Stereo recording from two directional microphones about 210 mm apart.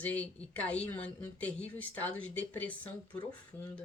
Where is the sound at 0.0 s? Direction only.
5° left (ahead or behind).